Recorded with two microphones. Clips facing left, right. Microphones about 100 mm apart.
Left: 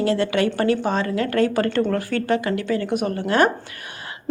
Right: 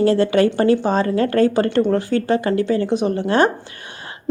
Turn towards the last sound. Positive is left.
turn(degrees=-30)  # may be behind; listen again after turning